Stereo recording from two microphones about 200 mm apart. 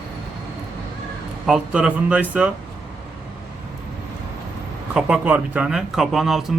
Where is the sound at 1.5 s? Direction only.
5° right (ahead or behind).